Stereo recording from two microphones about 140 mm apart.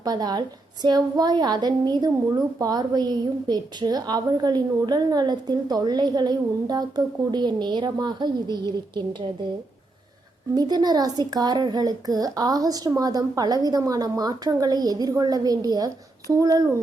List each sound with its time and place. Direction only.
0.0 s a woman's voice: 30° right (ahead or behind)
10.5 s a woman's voice: 30° right (ahead or behind)